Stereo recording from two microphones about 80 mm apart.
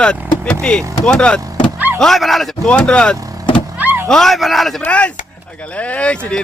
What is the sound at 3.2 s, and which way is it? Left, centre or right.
Vehicle, right.